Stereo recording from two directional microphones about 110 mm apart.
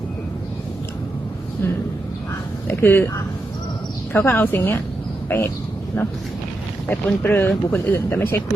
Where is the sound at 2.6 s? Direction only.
20° left (ahead or behind).